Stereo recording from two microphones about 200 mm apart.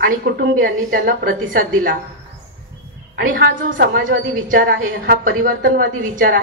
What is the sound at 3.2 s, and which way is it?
A woman's voice, 45° right (ahead or behind).